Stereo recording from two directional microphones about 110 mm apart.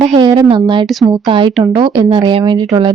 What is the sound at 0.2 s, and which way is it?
Speech, 40° right (ahead or behind).